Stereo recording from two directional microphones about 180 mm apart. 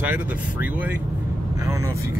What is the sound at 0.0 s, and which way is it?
Speech, 10° right (ahead or behind).